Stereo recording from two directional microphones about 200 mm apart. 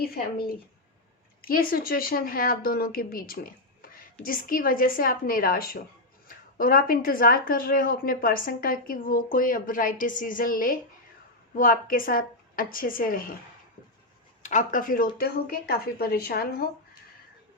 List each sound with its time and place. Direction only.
0.0 s speech: 50° left (ahead or behind)
14.4 s speech: 35° left (ahead or behind)